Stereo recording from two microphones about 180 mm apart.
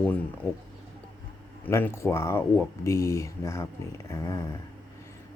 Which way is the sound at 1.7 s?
15° left (ahead or behind).